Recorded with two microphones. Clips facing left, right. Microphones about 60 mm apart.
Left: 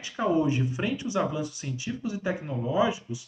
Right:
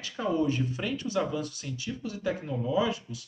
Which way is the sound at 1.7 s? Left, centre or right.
Centre.